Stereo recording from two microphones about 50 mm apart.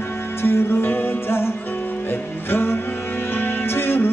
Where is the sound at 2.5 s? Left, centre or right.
Left.